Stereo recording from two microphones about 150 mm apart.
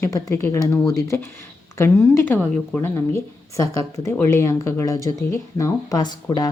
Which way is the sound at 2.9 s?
20° left (ahead or behind).